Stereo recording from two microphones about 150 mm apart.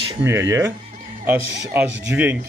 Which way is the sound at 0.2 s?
20° right (ahead or behind).